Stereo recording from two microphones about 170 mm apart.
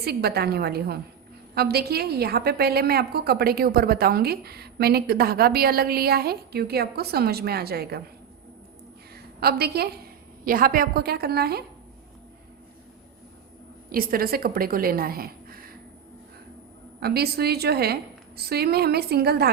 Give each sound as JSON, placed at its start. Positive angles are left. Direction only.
{"t": 0.0, "sound": "a woman's voice", "side_deg": -70}
{"t": 9.1, "sound": "a woman's voice", "side_deg": -65}
{"t": 10.4, "sound": "a woman's voice", "side_deg": -55}
{"t": 13.9, "sound": "a woman's voice", "side_deg": -60}
{"t": 17.0, "sound": "a woman's voice", "side_deg": -70}